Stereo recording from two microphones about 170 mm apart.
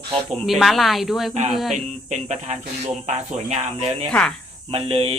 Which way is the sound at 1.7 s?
40° right (ahead or behind).